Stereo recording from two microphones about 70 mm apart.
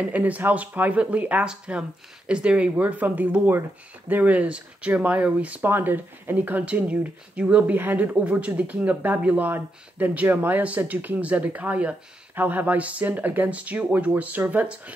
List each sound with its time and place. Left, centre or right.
0.0 s speech: right